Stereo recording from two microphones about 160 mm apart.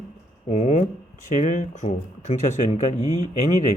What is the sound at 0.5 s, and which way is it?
Speech, 45° left (ahead or behind).